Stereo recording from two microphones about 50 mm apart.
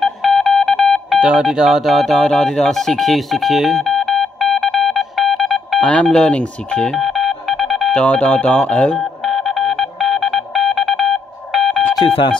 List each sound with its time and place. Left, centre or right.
0.0 s telephone dialing: centre
1.2 s speech: centre
2.2 s speech: centre
4.6 s telephone dialing: centre
5.8 s speech: left
7.0 s telephone dialing: centre
7.9 s speech: left
9.2 s telephone dialing: centre